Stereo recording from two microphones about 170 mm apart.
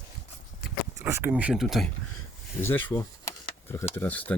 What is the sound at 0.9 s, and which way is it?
Speech, 15° right (ahead or behind).